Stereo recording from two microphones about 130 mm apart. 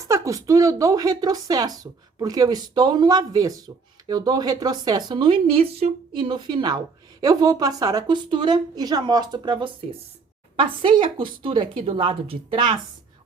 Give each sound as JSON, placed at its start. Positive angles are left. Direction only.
{"t": 0.1, "sound": "a woman's voice", "side_deg": -25}